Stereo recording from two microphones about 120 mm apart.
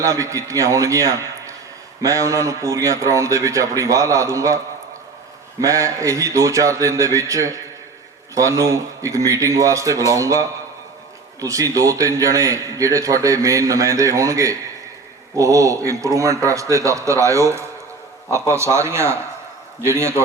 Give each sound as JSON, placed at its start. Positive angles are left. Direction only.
{"t": 0.0, "sound": "a man's voice", "side_deg": -25}